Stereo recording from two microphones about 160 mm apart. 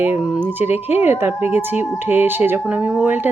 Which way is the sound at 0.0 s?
10° right (ahead or behind).